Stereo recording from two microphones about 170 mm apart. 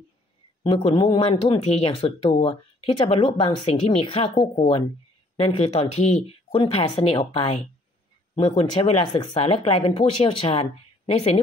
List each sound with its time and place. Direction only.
0.7 s speech: 30° left (ahead or behind)